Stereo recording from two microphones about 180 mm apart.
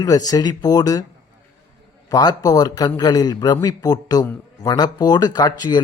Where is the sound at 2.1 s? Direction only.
20° left (ahead or behind).